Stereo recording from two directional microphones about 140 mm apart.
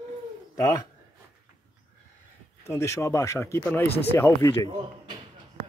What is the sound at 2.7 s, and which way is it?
Speech, 20° left (ahead or behind).